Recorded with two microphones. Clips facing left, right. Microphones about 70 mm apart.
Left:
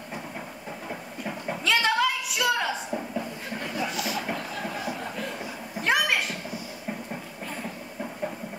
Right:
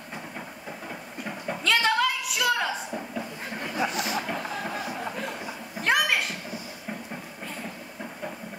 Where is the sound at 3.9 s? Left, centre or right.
Right.